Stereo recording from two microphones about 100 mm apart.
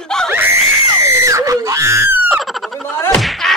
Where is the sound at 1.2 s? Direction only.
35° right (ahead or behind).